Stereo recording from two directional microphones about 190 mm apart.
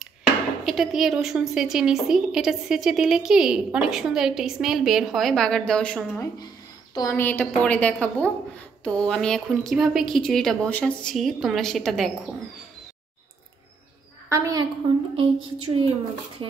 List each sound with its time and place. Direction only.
0.7 s a woman's voice: centre (ahead or behind)
6.9 s a woman's voice: 20° left (ahead or behind); by 12.1 s 5° left (ahead or behind)
14.3 s a woman's voice: 20° right (ahead or behind)
15.1 s a sound: 30° right (ahead or behind)